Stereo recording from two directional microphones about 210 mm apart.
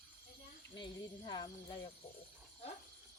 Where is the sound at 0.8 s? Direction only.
20° left (ahead or behind).